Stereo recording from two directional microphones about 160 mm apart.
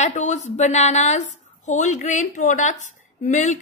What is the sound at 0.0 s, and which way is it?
A woman's voice, 50° left (ahead or behind).